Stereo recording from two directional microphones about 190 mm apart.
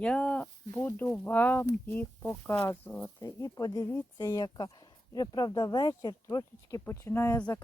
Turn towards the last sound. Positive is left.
turn(degrees=15)  # may be behind; listen again after turning